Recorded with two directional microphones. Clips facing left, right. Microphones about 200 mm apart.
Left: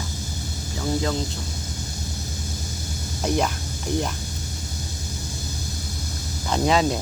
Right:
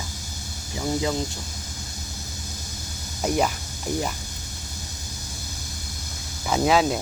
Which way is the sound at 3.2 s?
5° right (ahead or behind).